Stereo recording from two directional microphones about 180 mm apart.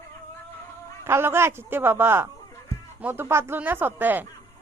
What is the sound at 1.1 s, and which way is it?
Speech, 15° right (ahead or behind).